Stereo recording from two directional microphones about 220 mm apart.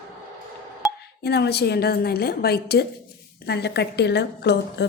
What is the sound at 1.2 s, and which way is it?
A woman's voice, 50° left (ahead or behind).